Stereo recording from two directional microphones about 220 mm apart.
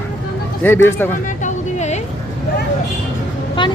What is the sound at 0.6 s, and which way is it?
Speech, 10° left (ahead or behind).